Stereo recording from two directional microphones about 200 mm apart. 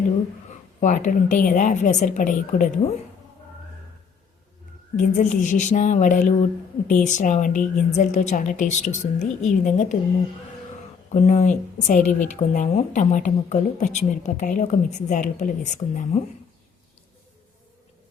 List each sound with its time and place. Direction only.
0.8 s speech: 40° left (ahead or behind)
4.9 s speech: 40° left (ahead or behind)
11.1 s speech: 35° left (ahead or behind)